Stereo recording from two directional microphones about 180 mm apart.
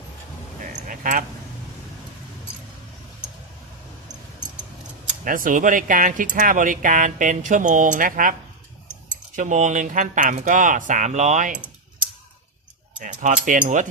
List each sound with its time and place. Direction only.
0.6 s a sound: 45° right (ahead or behind)
5.2 s speech: 50° right (ahead or behind)
13.0 s speech: 45° right (ahead or behind)